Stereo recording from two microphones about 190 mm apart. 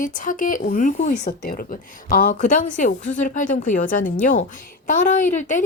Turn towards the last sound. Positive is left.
turn(degrees=40)  # may be behind; listen again after turning